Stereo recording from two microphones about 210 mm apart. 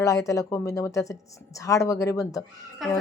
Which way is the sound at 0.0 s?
15° left (ahead or behind).